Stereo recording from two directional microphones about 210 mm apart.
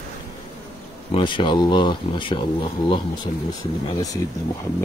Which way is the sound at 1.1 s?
25° left (ahead or behind).